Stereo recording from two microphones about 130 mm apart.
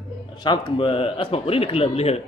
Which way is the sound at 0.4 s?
35° left (ahead or behind).